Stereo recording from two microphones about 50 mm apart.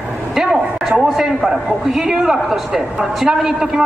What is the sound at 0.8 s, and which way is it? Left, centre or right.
A man's voice, centre.